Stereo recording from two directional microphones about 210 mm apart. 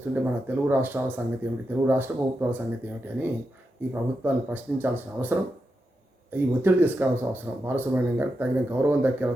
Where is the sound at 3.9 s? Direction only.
10° right (ahead or behind).